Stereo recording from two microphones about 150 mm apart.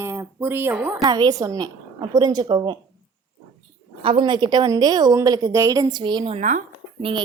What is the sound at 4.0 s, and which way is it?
A woman's voice, 35° right (ahead or behind).